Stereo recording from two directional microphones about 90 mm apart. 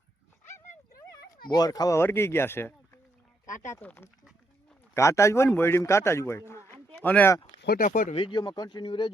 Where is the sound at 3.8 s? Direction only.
20° left (ahead or behind).